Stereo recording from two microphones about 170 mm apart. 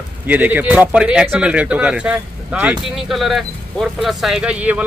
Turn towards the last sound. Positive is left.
turn(degrees=-10)  # may be behind; listen again after turning